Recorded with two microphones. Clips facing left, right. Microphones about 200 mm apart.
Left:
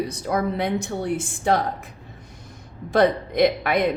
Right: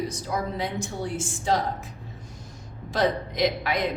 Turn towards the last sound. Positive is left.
turn(degrees=55)  # may be behind; listen again after turning